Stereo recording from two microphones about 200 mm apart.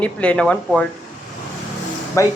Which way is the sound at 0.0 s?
5° left (ahead or behind).